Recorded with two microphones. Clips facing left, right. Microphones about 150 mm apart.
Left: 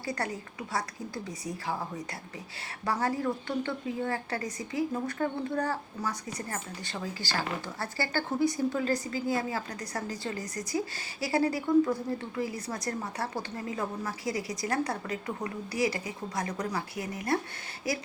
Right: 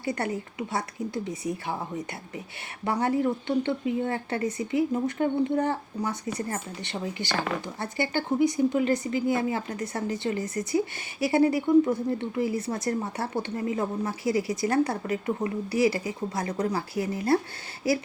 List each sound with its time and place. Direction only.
0.0 s a woman's voice: 25° right (ahead or behind)
2.8 s a woman's voice: 25° right (ahead or behind)